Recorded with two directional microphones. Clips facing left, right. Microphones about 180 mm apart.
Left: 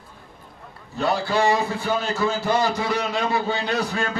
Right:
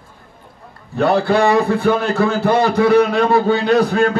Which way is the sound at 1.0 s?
60° right (ahead or behind).